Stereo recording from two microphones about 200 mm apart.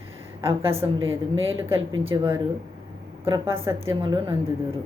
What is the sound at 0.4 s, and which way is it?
Speech, 25° right (ahead or behind).